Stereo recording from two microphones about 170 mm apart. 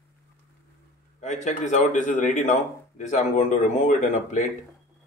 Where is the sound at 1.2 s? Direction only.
45° left (ahead or behind).